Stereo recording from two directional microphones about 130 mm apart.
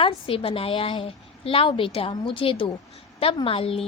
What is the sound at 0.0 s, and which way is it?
A woman's voice, 45° left (ahead or behind).